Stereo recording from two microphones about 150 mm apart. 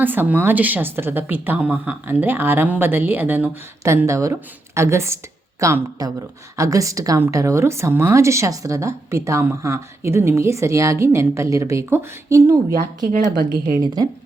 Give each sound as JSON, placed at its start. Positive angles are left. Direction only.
{"t": 0.0, "sound": "a woman's voice", "side_deg": -10}
{"t": 13.1, "sound": "a woman's voice", "side_deg": -65}